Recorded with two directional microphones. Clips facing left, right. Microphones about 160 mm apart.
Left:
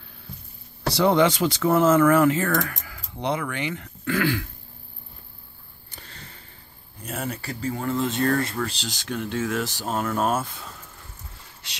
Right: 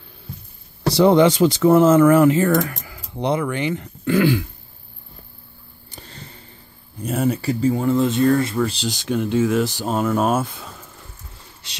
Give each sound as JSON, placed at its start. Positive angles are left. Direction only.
{"t": 1.0, "sound": "speech", "side_deg": -25}
{"t": 5.9, "sound": "sniff", "side_deg": -25}
{"t": 7.1, "sound": "speech", "side_deg": -15}